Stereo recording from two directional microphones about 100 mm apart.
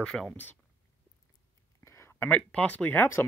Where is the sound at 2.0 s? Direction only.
25° left (ahead or behind).